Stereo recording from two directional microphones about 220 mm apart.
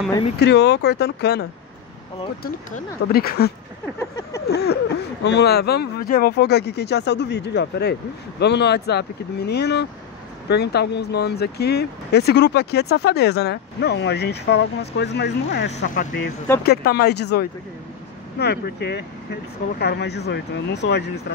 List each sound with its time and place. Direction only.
0.4 s speech: 50° left (ahead or behind)
15.8 s speech: 35° left (ahead or behind)